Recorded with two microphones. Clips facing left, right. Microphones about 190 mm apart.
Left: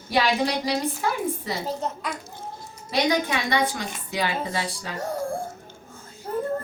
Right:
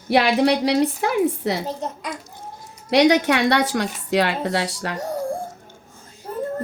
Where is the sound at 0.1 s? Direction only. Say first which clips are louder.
Right 6 dB; 65° right (ahead or behind).